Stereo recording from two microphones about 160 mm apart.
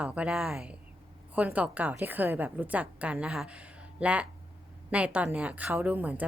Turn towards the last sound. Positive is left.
turn(degrees=-10)  # may be behind; listen again after turning